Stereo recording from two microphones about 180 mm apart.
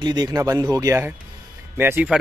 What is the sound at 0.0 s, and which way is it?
Speech, 25° right (ahead or behind).